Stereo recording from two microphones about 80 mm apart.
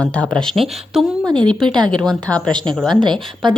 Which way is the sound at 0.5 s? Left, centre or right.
Centre.